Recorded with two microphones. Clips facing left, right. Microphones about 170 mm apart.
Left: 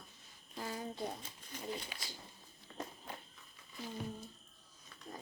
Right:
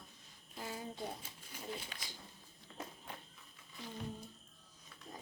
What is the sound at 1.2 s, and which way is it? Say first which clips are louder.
Speech: left 3 dB; 10° right (ahead or behind).